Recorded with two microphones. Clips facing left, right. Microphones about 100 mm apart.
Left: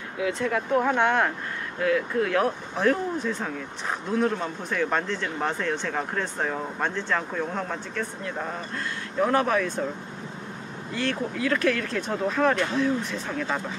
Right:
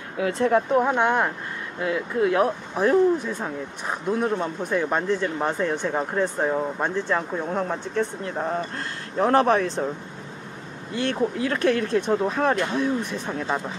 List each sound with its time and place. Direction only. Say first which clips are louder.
0.2 s speech: right 5 dB; 35° right (ahead or behind)
0.7 s speech: right 2 dB; 15° right (ahead or behind)
1.8 s speech: even; 20° right (ahead or behind)
11.0 s speech: right 4 dB; 25° right (ahead or behind)
13.3 s speech: right 2 dB; 30° right (ahead or behind)